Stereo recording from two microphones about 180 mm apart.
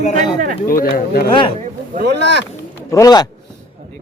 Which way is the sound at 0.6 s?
55° left (ahead or behind).